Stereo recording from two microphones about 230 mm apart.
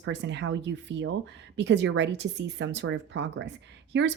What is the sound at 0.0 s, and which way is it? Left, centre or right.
Speech, right.